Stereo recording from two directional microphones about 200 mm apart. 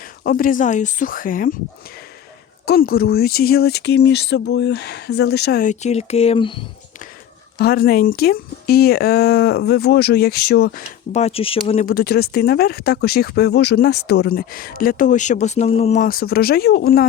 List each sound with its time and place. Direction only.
0.0 s speech: 45° left (ahead or behind)
2.6 s speech: 50° left (ahead or behind); by 6.7 s 25° left (ahead or behind)
7.6 s speech: 50° left (ahead or behind)
11.1 s speech: 30° left (ahead or behind)
11.9 s speech: 50° left (ahead or behind)